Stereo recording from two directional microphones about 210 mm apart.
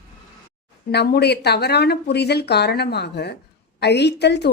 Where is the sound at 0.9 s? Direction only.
50° left (ahead or behind).